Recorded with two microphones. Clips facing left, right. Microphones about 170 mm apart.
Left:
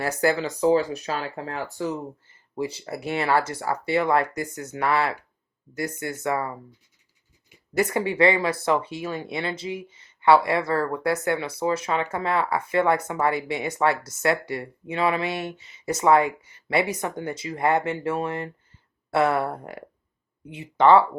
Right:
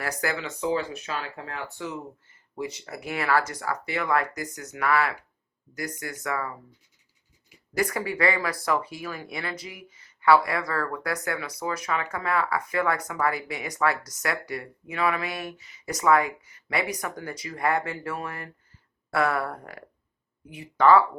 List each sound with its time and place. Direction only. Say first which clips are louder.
0.0 s speech: left 7 dB; 30° left (ahead or behind)
7.7 s speech: left 4 dB; 25° left (ahead or behind)